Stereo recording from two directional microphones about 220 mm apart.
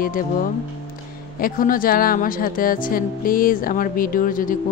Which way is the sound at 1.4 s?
40° left (ahead or behind).